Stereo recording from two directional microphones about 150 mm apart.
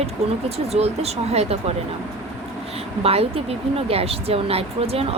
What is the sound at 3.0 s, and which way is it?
Speech, 40° right (ahead or behind).